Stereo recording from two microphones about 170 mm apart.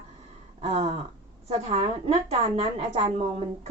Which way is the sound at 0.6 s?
40° right (ahead or behind).